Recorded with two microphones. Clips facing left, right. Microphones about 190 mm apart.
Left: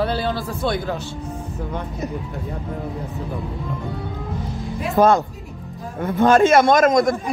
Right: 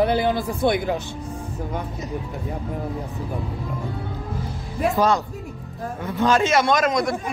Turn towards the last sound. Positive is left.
turn(degrees=45)  # may be behind; listen again after turning